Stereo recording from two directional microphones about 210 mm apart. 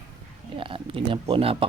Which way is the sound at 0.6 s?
25° right (ahead or behind).